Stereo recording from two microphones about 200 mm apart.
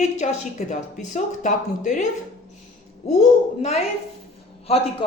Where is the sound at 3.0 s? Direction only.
30° left (ahead or behind).